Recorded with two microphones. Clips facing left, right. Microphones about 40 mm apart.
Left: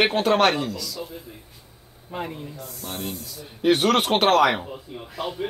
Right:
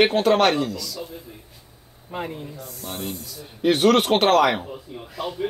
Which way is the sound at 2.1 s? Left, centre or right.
Centre.